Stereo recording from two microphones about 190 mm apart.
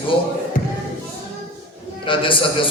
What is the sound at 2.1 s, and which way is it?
Speech, 25° left (ahead or behind).